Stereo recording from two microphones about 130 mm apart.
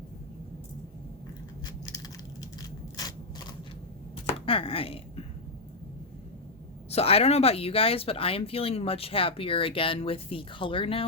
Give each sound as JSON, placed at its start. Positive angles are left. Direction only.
{"t": 1.6, "sound": "crushing", "side_deg": 30}
{"t": 4.3, "sound": "a sound", "side_deg": 45}
{"t": 6.9, "sound": "speech", "side_deg": 50}